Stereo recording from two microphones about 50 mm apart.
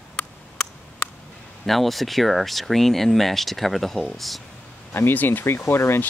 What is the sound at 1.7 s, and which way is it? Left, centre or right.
Speech, centre.